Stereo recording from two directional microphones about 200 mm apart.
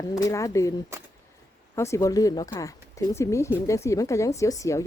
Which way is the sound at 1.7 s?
15° left (ahead or behind).